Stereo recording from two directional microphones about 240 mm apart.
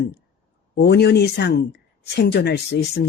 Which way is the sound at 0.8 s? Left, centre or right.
Left.